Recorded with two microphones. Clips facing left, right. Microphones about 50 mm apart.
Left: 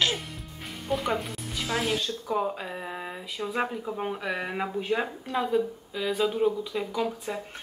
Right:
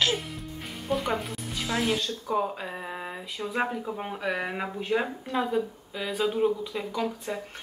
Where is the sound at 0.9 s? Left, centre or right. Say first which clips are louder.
Even; centre.